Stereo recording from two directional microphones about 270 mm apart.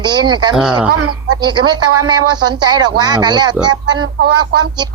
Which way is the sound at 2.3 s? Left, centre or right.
Centre.